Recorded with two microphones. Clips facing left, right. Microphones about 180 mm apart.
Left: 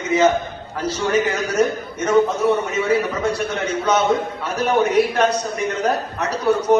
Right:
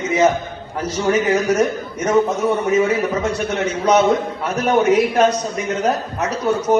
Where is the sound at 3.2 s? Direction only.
35° left (ahead or behind).